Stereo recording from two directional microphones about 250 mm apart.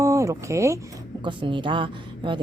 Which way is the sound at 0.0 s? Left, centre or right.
Centre.